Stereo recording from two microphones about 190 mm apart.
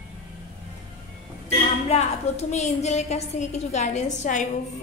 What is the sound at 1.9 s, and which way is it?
A woman's voice, 35° left (ahead or behind).